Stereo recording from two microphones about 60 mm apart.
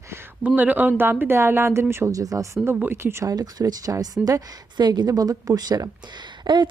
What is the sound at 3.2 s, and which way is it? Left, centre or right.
Speech, right.